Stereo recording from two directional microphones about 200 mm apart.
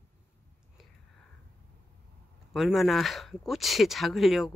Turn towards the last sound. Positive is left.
turn(degrees=0)  # may be behind; listen again after turning